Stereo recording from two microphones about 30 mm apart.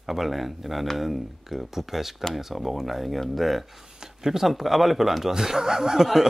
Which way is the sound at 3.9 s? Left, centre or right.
Right.